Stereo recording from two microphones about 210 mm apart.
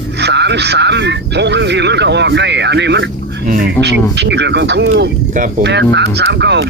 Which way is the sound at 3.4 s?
40° right (ahead or behind).